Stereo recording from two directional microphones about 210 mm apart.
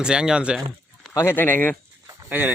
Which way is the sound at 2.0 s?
10° right (ahead or behind).